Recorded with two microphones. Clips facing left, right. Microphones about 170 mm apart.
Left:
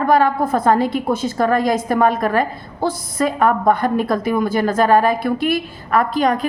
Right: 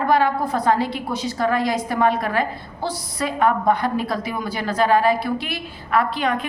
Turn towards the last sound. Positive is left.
turn(degrees=40)  # may be behind; listen again after turning